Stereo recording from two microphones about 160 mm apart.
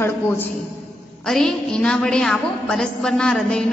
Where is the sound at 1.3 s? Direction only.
Centre (ahead or behind).